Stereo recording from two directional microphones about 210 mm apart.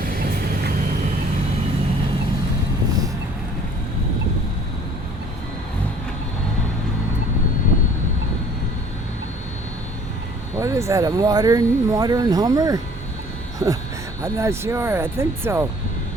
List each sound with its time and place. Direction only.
0.0 s vehicle: 45° right (ahead or behind)
10.6 s speech: 15° right (ahead or behind)